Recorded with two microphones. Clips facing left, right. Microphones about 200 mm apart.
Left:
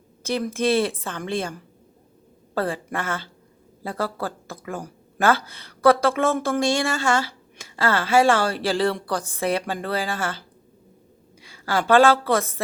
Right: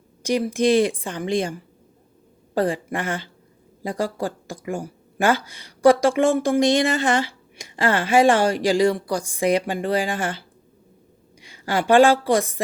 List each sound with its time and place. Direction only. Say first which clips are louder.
0.2 s a woman's voice: right 4 dB; 15° right (ahead or behind)